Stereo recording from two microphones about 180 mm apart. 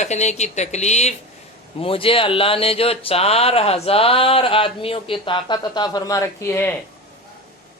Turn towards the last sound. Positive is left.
turn(degrees=10)  # may be behind; listen again after turning